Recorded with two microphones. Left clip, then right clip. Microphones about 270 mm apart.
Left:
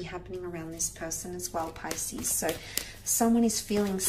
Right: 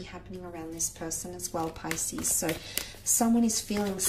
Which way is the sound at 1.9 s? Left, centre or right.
Centre.